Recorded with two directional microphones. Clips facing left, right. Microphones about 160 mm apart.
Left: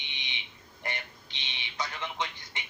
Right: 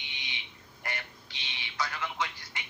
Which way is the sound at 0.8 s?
20° left (ahead or behind).